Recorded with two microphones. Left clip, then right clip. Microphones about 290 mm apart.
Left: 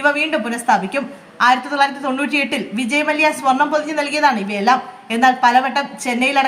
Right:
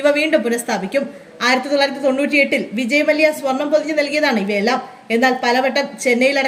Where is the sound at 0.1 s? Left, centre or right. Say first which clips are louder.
Right 2 dB; left.